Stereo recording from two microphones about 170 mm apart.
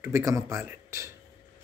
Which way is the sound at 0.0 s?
15° right (ahead or behind).